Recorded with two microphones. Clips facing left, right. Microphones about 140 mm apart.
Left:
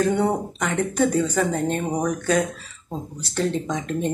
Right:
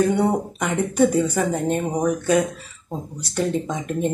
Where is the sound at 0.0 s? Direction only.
10° right (ahead or behind).